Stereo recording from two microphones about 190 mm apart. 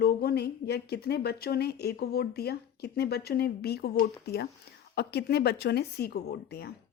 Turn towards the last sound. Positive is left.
turn(degrees=55)  # may be behind; listen again after turning